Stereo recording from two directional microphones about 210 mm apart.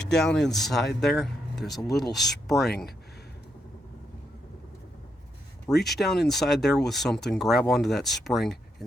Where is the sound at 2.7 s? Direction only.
50° left (ahead or behind).